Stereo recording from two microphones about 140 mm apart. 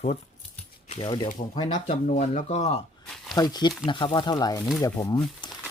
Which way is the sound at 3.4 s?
30° left (ahead or behind).